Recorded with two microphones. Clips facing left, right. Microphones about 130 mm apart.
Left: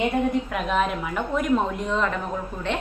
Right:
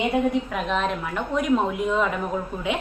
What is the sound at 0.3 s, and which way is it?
A woman's voice, centre (ahead or behind).